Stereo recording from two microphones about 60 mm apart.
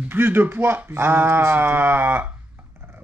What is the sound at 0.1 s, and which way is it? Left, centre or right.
Speech, right.